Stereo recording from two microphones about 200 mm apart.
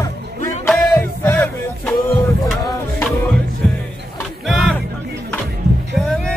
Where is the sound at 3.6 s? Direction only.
5° left (ahead or behind).